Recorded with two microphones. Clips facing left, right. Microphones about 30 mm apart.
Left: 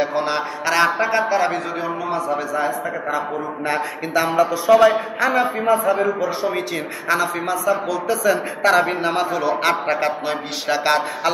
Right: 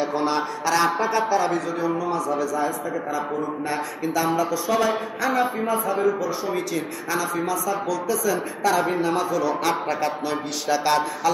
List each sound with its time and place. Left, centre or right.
0.2 s a man's voice: left